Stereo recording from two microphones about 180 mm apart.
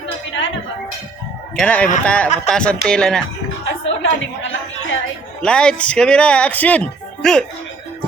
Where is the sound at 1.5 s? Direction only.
5° left (ahead or behind).